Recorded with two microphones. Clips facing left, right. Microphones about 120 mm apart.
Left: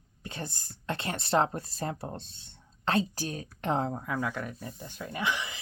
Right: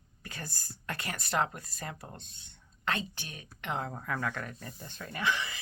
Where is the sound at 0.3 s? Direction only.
25° left (ahead or behind).